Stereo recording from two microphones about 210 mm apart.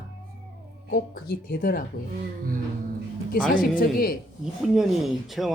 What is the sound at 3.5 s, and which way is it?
Speech, 40° left (ahead or behind).